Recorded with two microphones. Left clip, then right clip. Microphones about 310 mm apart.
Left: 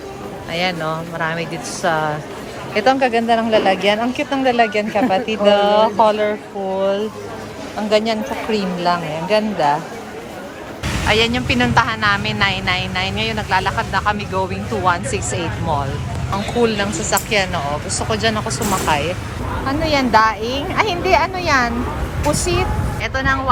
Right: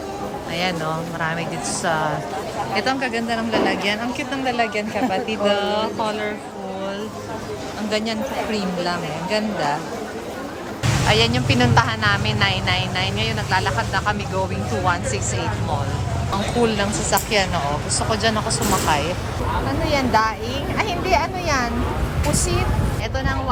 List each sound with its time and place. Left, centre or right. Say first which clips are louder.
0.5 s speech: left 4 dB; centre
7.9 s speech: left 7 dB; centre
11.1 s speech: left 3 dB; centre
16.6 s speech: left 2 dB; centre
19.6 s speech: left 6 dB; centre